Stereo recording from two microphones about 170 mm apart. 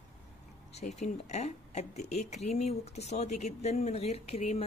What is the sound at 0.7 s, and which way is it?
Speech, 40° left (ahead or behind).